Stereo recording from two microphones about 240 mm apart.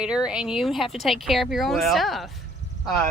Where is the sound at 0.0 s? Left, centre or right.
Centre.